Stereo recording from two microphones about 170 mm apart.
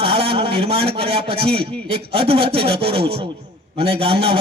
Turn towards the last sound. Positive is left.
turn(degrees=-35)  # may be behind; listen again after turning